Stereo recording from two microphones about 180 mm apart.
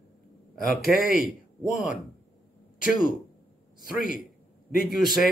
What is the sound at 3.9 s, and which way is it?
Speech, 50° left (ahead or behind).